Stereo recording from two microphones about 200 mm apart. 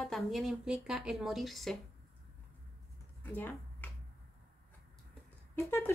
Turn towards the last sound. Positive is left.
turn(degrees=10)  # may be behind; listen again after turning